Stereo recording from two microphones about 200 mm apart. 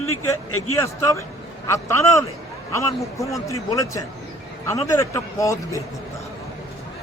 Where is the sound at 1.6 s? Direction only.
15° left (ahead or behind).